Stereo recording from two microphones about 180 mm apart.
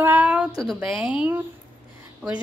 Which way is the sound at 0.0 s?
10° right (ahead or behind).